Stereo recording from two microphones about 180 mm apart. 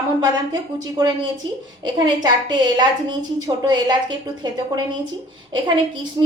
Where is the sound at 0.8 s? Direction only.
20° right (ahead or behind).